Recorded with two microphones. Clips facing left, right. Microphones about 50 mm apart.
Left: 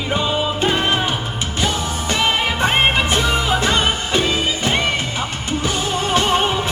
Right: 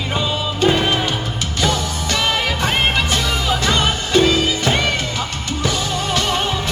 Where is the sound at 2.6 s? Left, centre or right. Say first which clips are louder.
Left 3 dB; left.